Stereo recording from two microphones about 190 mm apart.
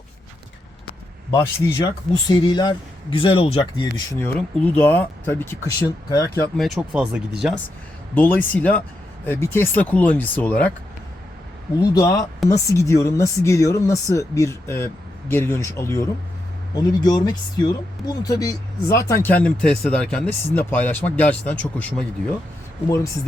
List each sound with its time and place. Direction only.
1.3 s speech: 20° left (ahead or behind)
6.7 s speech: 10° right (ahead or behind)
8.1 s speech: 10° left (ahead or behind)
11.8 s speech: 20° left (ahead or behind)